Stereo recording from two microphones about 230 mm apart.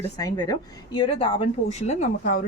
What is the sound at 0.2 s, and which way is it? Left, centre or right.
A woman's voice, centre.